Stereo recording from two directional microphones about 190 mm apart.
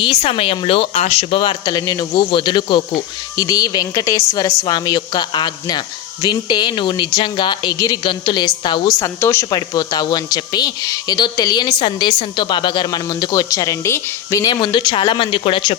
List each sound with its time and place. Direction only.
0.0 s speech: 30° left (ahead or behind)